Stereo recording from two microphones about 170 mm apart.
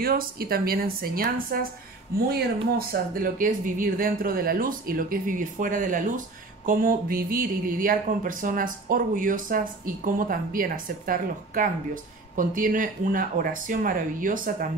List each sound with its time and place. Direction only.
0.0 s speech: 60° right (ahead or behind)
2.9 s speech: 55° right (ahead or behind)